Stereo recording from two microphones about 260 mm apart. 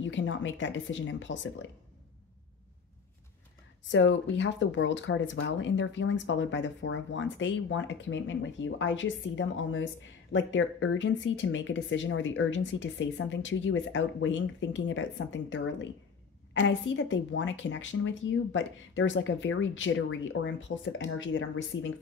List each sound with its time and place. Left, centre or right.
0.0 s speech: left
3.9 s speech: left